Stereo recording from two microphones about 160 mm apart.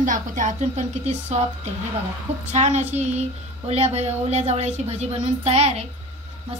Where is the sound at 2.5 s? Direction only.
45° right (ahead or behind).